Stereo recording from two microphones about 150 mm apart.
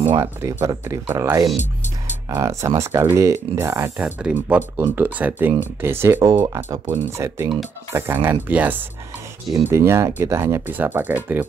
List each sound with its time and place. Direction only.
0.2 s speech: 15° right (ahead or behind)